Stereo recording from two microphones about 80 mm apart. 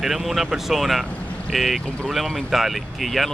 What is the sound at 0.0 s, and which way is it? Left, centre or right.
Speech, centre.